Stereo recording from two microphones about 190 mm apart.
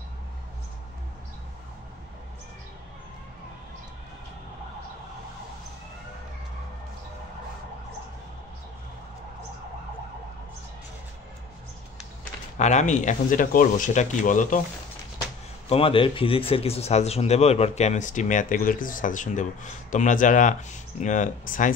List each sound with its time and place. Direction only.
12.5 s speech: 40° left (ahead or behind)
15.7 s speech: 30° left (ahead or behind)